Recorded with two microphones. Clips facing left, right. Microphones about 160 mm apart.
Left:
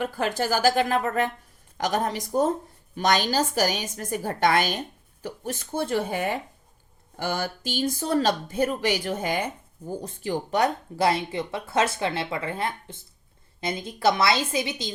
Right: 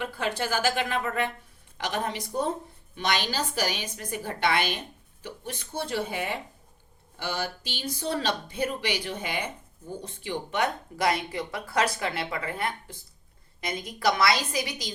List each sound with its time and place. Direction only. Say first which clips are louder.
0.0 s speech: left 4 dB; 40° left (ahead or behind); by 14.9 s 25° left (ahead or behind)